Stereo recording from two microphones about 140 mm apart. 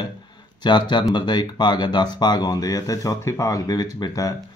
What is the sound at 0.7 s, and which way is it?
Speech, 30° left (ahead or behind).